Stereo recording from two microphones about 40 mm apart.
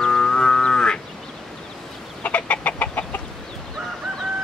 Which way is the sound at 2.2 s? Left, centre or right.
Left.